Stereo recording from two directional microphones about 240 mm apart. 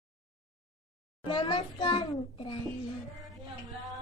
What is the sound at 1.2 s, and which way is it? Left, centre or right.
A child's voice, left.